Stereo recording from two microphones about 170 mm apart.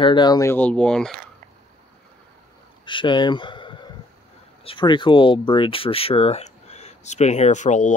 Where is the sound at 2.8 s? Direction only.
30° left (ahead or behind).